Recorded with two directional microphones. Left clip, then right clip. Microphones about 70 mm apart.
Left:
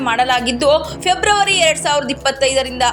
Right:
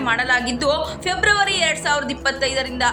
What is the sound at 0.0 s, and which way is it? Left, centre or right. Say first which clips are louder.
A woman's voice: left 4 dB; left.